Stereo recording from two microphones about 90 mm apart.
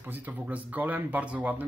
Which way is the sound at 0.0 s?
20° right (ahead or behind).